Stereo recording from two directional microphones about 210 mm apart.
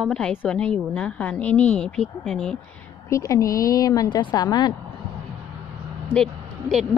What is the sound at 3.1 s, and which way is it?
Speech, 15° left (ahead or behind).